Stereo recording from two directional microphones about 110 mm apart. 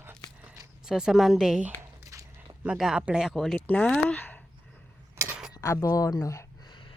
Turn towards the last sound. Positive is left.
turn(degrees=30)  # may be behind; listen again after turning